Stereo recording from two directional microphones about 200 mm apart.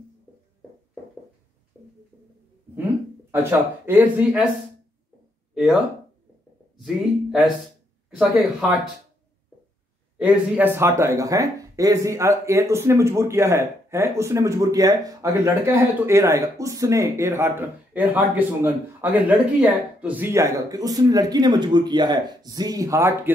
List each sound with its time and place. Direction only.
3.3 s speech: 10° right (ahead or behind)
5.5 s a sound: 5° right (ahead or behind)
6.8 s speech: centre (ahead or behind)
10.1 s speech: 5° right (ahead or behind)